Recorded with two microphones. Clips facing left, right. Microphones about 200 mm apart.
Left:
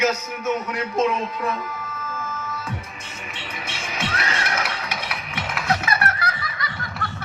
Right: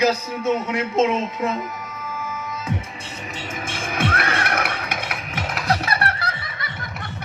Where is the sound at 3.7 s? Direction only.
50° right (ahead or behind); by 7.1 s 25° right (ahead or behind).